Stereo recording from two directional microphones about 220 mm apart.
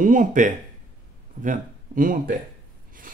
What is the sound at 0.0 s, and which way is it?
Speech, 35° right (ahead or behind).